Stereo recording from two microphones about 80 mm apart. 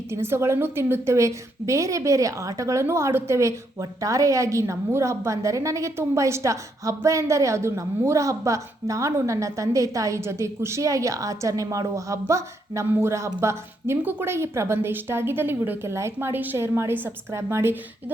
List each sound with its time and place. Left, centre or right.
0.1 s a woman's voice: right